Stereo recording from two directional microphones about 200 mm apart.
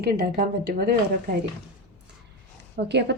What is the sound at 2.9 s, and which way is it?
Speech, 55° right (ahead or behind).